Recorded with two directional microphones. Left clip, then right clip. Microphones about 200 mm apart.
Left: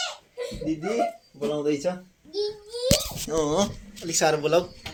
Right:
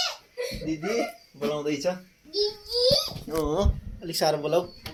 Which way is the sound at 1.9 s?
Centre (ahead or behind).